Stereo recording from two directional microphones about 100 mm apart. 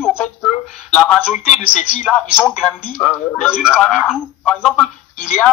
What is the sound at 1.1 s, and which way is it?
Speech, 10° right (ahead or behind).